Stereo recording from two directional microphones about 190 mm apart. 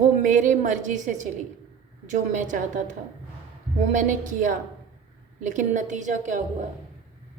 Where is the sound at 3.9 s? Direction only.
45° right (ahead or behind).